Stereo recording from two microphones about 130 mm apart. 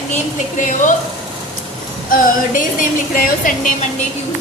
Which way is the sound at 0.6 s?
75° left (ahead or behind).